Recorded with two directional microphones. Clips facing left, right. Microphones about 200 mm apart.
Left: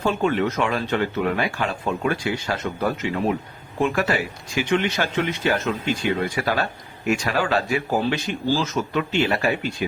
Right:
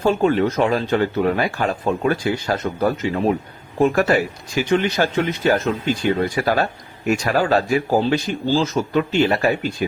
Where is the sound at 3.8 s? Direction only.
40° right (ahead or behind).